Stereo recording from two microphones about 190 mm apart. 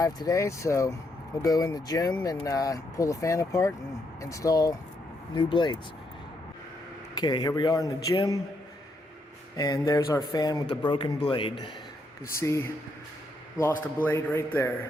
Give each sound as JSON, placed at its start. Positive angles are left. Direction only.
{"t": 0.0, "sound": "speech", "side_deg": 20}
{"t": 7.2, "sound": "speech", "side_deg": 20}
{"t": 9.6, "sound": "speech", "side_deg": 20}
{"t": 12.4, "sound": "speech", "side_deg": 15}
{"t": 14.0, "sound": "speech", "side_deg": 10}